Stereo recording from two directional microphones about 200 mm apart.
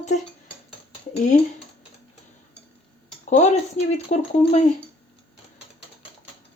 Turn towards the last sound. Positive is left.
turn(degrees=35)  # may be behind; listen again after turning